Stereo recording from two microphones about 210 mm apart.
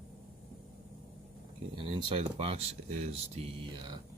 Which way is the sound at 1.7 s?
25° right (ahead or behind).